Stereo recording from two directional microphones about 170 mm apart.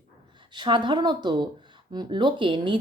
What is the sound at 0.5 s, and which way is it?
A woman's voice, 25° right (ahead or behind).